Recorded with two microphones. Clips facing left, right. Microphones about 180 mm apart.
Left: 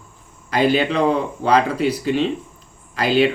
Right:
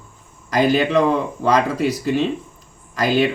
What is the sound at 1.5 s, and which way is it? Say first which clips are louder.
Speech: left 1 dB; 45° right (ahead or behind).